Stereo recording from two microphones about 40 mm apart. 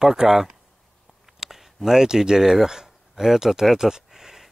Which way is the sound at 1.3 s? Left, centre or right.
Centre.